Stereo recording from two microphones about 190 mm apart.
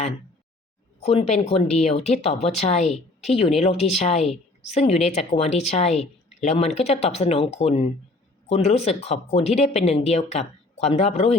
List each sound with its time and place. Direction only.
1.0 s a woman's voice: 35° left (ahead or behind)